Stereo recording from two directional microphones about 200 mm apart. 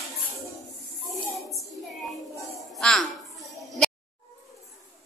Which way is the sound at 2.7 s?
Centre (ahead or behind).